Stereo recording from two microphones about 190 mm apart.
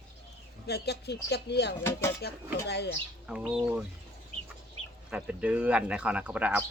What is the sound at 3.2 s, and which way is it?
Speech, 5° right (ahead or behind).